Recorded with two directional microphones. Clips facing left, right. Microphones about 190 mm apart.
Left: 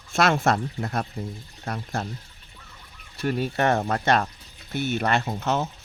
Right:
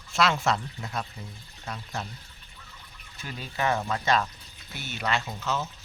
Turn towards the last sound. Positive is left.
turn(degrees=55)  # may be behind; listen again after turning